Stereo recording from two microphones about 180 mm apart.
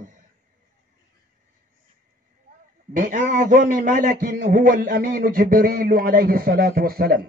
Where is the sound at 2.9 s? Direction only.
45° right (ahead or behind).